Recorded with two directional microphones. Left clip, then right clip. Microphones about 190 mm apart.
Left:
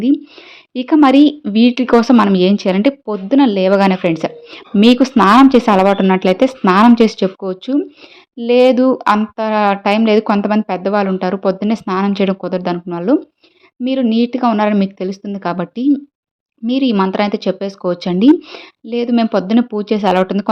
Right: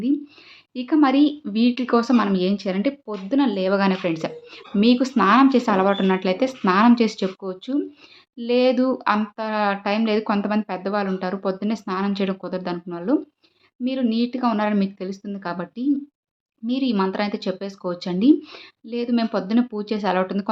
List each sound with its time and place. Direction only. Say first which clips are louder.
0.7 s speech: left 8 dB; 45° left (ahead or behind)